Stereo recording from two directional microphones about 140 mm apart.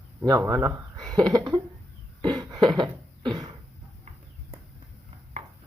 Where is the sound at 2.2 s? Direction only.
30° right (ahead or behind).